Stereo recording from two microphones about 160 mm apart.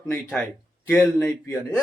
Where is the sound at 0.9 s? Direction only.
10° left (ahead or behind).